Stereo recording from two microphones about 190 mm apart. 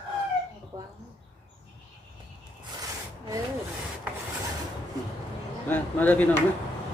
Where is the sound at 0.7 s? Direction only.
15° right (ahead or behind).